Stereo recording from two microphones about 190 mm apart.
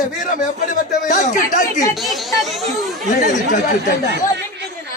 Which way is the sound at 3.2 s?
45° left (ahead or behind).